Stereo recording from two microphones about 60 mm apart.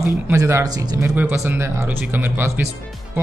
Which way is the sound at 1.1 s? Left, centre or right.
Right.